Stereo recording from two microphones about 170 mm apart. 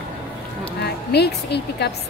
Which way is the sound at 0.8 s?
75° left (ahead or behind).